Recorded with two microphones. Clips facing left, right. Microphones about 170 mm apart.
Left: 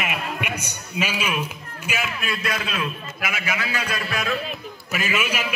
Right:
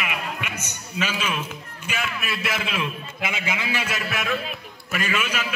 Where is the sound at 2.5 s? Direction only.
25° right (ahead or behind).